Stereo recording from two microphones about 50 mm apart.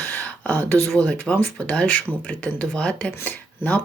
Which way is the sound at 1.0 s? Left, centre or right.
Left.